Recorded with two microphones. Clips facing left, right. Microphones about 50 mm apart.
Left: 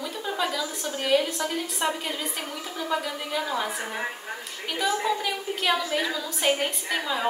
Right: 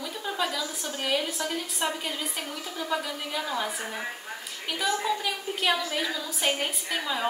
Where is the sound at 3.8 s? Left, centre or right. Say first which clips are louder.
Left 3 dB; centre.